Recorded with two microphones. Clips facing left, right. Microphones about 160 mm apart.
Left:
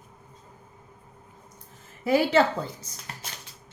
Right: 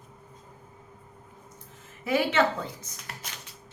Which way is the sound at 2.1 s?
35° left (ahead or behind).